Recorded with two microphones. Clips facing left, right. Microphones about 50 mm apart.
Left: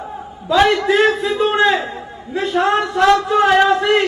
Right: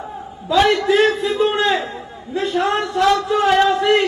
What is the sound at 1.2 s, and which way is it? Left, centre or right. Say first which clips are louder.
A man's voice: left 2 dB; centre.